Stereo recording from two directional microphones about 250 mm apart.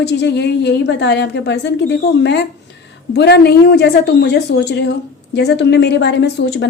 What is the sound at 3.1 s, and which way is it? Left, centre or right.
A woman's voice, left.